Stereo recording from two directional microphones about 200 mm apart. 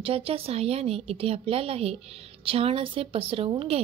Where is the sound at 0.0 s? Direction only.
30° right (ahead or behind).